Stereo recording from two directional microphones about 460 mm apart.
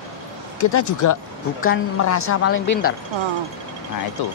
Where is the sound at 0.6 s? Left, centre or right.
Left.